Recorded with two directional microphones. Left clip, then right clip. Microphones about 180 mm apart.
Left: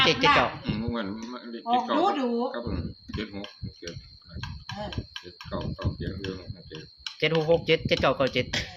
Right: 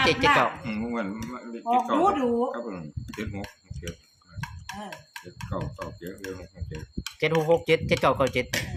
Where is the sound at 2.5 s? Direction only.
20° right (ahead or behind).